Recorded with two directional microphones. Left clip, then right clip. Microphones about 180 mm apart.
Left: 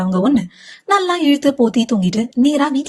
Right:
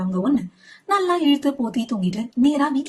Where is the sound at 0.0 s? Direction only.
50° left (ahead or behind).